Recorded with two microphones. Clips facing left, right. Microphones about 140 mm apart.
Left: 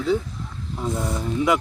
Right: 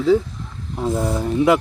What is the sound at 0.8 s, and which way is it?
Speech, 30° right (ahead or behind).